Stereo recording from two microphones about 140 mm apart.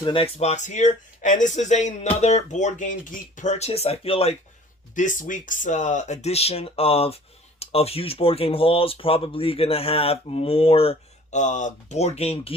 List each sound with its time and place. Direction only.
0.0 s speech: 40° left (ahead or behind)
4.9 s speech: 65° left (ahead or behind); by 12.5 s 45° left (ahead or behind)